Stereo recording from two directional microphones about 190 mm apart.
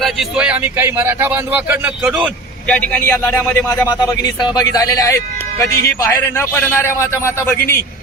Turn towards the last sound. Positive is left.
turn(degrees=10)  # may be behind; listen again after turning